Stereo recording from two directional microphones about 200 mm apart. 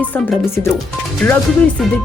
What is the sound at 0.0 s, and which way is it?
Speech, 10° left (ahead or behind).